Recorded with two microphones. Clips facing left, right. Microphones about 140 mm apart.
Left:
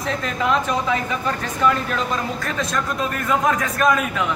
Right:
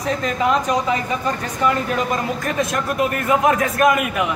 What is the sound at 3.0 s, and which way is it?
A man's voice, 15° right (ahead or behind).